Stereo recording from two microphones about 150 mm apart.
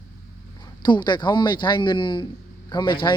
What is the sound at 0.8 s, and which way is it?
Speech, 30° left (ahead or behind).